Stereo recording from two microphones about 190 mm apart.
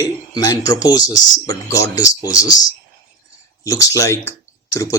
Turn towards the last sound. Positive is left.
turn(degrees=15)  # may be behind; listen again after turning